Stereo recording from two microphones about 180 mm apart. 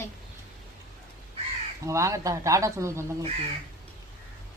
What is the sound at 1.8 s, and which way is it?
Speech, 15° right (ahead or behind).